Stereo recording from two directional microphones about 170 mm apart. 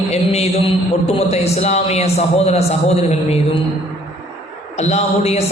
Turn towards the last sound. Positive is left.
turn(degrees=40)  # may be behind; listen again after turning